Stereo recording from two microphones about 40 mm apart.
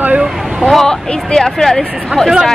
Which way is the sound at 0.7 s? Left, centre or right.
Centre.